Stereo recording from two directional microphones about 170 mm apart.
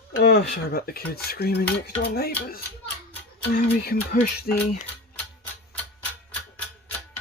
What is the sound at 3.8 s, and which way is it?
Speech, 60° left (ahead or behind).